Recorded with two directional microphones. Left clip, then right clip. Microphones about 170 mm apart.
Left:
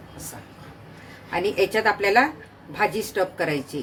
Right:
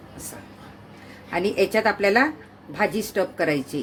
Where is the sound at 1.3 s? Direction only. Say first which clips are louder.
Even; 30° right (ahead or behind).